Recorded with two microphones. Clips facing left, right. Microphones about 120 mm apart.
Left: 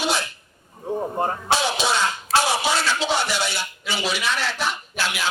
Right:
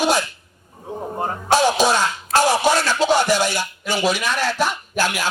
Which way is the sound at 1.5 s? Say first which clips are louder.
Right 8 dB; 45° right (ahead or behind).